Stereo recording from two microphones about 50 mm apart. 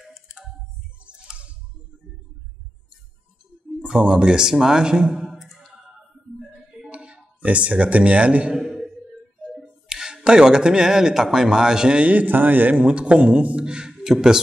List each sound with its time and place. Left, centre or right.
1.2 s music: right
3.8 s speech: centre
5.2 s a sound: centre
6.9 s a sound: centre
7.3 s a man's voice: right
8.5 s a sound: centre
9.5 s speech: centre
12.0 s a man's voice: right
12.7 s a man's voice: right